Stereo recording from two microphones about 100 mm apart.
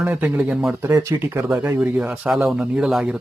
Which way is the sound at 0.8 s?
30° right (ahead or behind).